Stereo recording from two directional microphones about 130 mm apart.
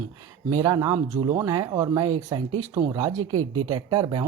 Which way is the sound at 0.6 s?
25° right (ahead or behind).